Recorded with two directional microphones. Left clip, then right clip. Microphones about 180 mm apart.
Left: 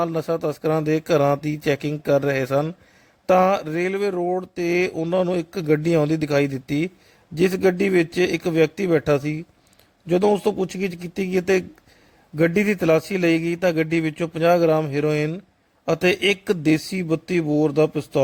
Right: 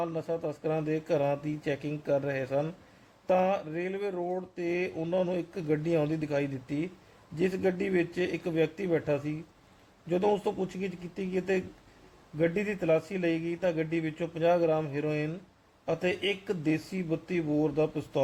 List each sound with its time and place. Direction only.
0.0 s speech: 55° left (ahead or behind)